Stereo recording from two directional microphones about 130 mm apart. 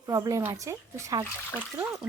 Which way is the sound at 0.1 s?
25° right (ahead or behind).